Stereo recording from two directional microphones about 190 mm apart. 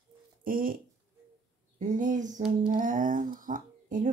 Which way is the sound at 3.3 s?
45° right (ahead or behind).